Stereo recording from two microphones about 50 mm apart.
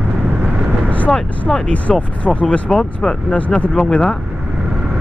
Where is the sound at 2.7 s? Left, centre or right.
Centre.